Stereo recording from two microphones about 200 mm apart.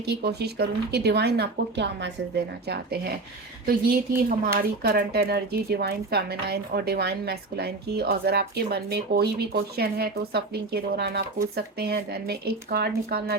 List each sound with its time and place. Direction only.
0.0 s speech: 55° right (ahead or behind)